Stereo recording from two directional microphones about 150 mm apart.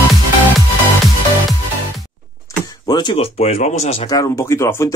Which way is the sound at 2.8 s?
30° left (ahead or behind).